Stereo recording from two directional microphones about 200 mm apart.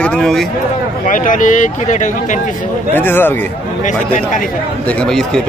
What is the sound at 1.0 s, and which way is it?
Speech, 40° left (ahead or behind).